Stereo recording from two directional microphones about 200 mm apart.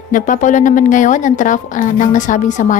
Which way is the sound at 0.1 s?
40° left (ahead or behind).